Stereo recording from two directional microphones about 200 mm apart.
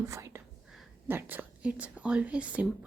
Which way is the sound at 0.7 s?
Centre (ahead or behind).